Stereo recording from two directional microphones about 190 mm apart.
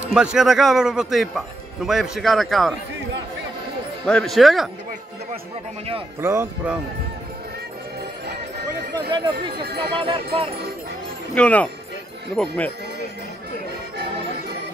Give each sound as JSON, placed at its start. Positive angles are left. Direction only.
{"t": 0.1, "sound": "a man's voice", "side_deg": -5}
{"t": 4.0, "sound": "a man's voice", "side_deg": 5}
{"t": 6.2, "sound": "speech", "side_deg": -15}
{"t": 9.1, "sound": "speech", "side_deg": -25}
{"t": 11.3, "sound": "speech", "side_deg": 5}